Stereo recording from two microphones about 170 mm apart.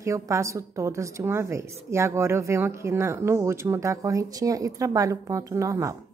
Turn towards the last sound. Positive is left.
turn(degrees=-20)  # may be behind; listen again after turning